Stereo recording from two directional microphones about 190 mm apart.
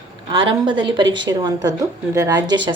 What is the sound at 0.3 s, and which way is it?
A woman's voice, 25° right (ahead or behind).